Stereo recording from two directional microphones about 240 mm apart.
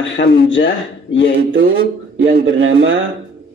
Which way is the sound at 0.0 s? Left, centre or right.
Left.